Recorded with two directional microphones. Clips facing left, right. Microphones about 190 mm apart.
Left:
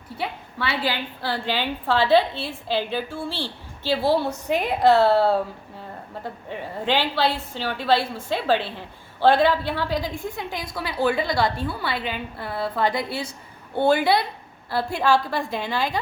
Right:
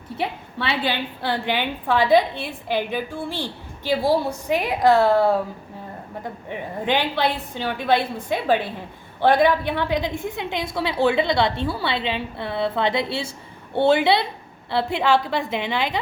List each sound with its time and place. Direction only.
0.2 s a woman's voice: 25° right (ahead or behind)
6.5 s a woman's voice: 15° right (ahead or behind)